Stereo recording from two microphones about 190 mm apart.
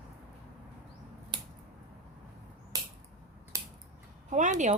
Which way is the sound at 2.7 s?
20° right (ahead or behind).